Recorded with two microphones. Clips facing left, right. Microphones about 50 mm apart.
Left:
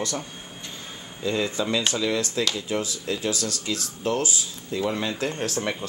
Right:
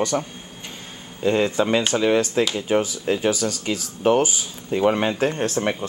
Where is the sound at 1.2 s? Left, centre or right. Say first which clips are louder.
Right 6 dB; right; by 3.5 s centre.